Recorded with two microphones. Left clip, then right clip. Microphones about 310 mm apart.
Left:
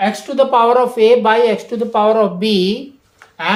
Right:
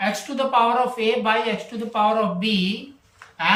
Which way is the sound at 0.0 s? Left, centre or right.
Centre.